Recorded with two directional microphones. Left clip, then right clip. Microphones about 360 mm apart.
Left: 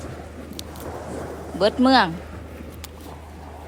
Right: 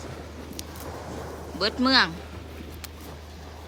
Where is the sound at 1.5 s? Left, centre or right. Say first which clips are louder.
Left 5 dB; centre.